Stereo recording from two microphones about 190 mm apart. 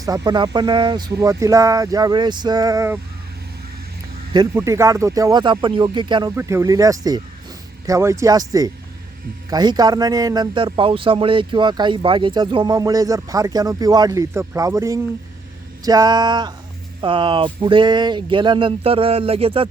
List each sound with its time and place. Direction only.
0.3 s speech: 20° right (ahead or behind)
4.3 s speech: 20° right (ahead or behind)